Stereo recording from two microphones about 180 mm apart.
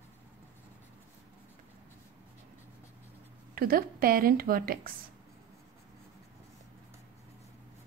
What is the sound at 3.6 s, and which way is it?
A woman's voice, 55° right (ahead or behind).